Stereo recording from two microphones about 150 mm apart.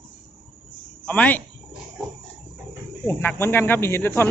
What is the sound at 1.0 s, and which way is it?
Speech, 10° left (ahead or behind).